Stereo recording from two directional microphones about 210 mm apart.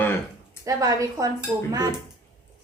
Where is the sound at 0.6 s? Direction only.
15° right (ahead or behind).